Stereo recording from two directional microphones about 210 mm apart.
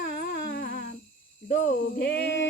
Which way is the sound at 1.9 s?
50° left (ahead or behind).